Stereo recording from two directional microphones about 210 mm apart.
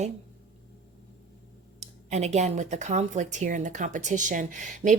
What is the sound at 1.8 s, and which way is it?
Speech, 30° right (ahead or behind).